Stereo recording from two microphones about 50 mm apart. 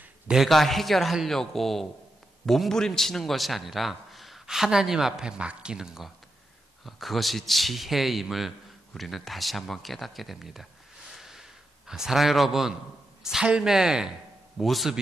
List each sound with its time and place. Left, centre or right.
0.5 s a man's voice: centre
6.8 s a man's voice: centre
11.1 s a sound: centre
11.9 s a man's voice: centre
14.6 s a man's voice: centre